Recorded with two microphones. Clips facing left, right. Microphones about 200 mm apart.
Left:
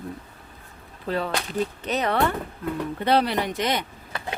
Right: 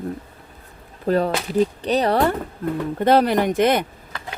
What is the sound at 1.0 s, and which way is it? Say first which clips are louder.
Speech: right 7 dB; 45° right (ahead or behind).